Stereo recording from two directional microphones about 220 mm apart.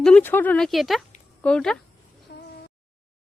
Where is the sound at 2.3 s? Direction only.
50° left (ahead or behind).